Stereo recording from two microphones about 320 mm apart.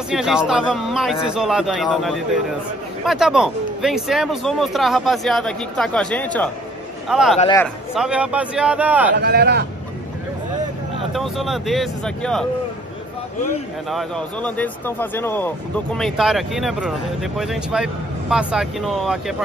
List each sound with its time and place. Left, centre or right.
0.1 s speech: centre
7.3 s a man's voice: centre
7.6 s speech: centre
9.1 s speech: right
11.1 s speech: centre
13.8 s speech: centre